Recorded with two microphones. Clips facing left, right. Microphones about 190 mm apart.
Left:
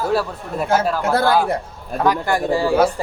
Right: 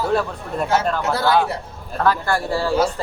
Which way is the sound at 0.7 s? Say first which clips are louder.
Left 3 dB; 5° left (ahead or behind).